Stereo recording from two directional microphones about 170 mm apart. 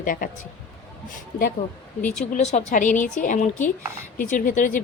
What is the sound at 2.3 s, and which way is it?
A woman's voice, 45° left (ahead or behind).